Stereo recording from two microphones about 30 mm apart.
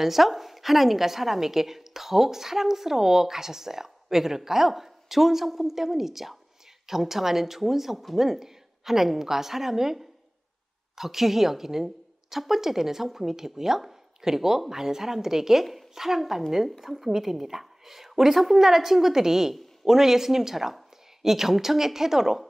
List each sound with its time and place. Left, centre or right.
0.0 s a woman's voice: centre
19.5 s a sound: centre
19.9 s a woman's voice: centre